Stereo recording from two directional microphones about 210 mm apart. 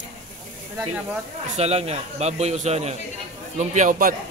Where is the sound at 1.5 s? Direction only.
30° right (ahead or behind).